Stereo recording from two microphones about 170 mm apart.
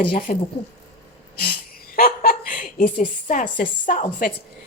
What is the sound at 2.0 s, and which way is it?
A woman's voice, 60° left (ahead or behind).